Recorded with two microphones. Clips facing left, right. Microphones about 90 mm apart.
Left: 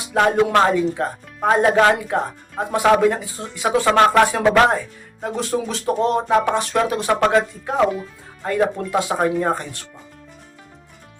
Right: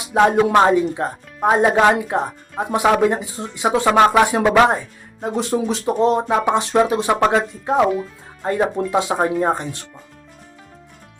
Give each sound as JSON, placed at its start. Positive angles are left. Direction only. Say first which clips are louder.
{"t": 0.1, "sound": "speech", "louder": "right 2 dB", "side_deg": -20}
{"t": 7.9, "sound": "speech", "louder": "right 4 dB", "side_deg": 0}
{"t": 8.4, "sound": "speech", "louder": "right 1 dB", "side_deg": -20}